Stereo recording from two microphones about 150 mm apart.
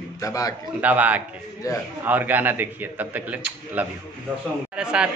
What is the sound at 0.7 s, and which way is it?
Speech, 10° right (ahead or behind).